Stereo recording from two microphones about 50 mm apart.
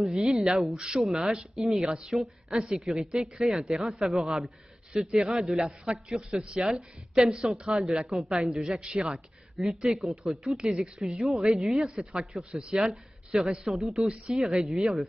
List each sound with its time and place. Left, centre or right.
0.2 s a woman's voice: centre
0.7 s a woman's voice: centre
4.9 s a man's voice: centre
5.2 s a woman's voice: centre
9.8 s a woman's voice: centre
11.1 s a woman's voice: centre